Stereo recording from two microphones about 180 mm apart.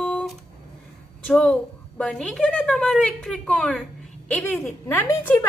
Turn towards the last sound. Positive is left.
turn(degrees=10)  # may be behind; listen again after turning